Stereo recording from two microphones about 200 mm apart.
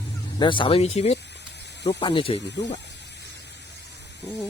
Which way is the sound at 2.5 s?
60° left (ahead or behind).